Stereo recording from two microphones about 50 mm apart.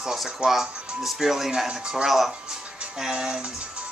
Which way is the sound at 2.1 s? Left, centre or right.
Centre.